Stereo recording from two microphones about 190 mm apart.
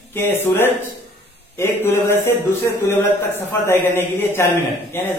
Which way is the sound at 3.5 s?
10° left (ahead or behind).